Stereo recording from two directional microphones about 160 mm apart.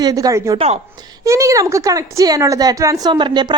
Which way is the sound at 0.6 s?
40° right (ahead or behind).